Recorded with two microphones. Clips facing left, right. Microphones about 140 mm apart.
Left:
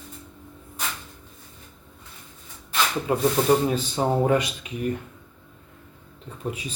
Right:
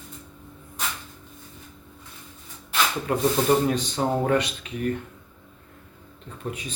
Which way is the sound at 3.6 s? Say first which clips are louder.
Even; 10° left (ahead or behind).